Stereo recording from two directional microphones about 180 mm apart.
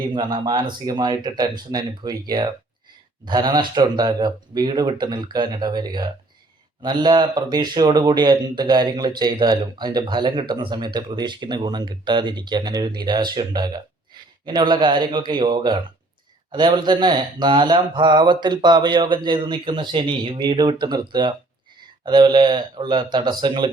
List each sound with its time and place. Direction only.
0.1 s speech: 25° right (ahead or behind)